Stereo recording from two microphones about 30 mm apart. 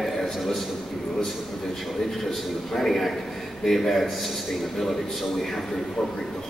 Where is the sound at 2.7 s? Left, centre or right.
Centre.